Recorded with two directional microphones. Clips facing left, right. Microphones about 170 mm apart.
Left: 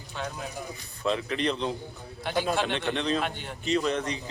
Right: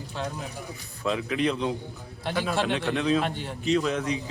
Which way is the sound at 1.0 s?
5° right (ahead or behind).